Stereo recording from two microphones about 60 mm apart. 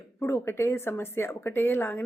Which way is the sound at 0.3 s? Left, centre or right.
Left.